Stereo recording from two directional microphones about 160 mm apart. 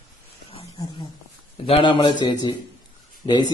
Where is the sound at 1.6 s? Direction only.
35° left (ahead or behind).